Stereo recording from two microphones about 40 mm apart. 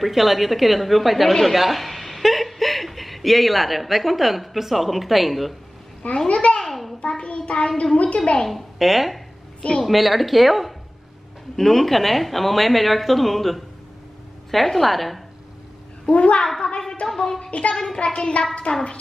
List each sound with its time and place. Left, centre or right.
0.0 s a woman's voice: centre
6.2 s a child's voice: left
6.7 s a sound: centre
7.0 s a child's voice: left
8.5 s a woman's voice: centre
9.6 s a woman's voice: left
9.8 s a woman's voice: centre
16.2 s a child's voice: left
17.1 s a sound: centre
17.4 s a child's voice: left
17.7 s a child's voice: centre